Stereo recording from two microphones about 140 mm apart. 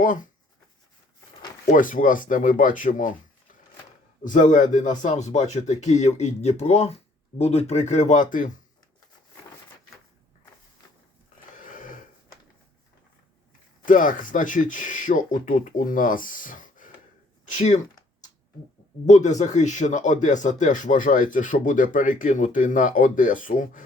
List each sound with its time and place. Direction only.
0.0 s speech: 65° left (ahead or behind)
1.7 s speech: 70° left (ahead or behind)
4.2 s speech: 65° left (ahead or behind)
11.5 s a sound: 75° left (ahead or behind)
13.8 s speech: 70° left (ahead or behind)
19.0 s speech: 60° left (ahead or behind)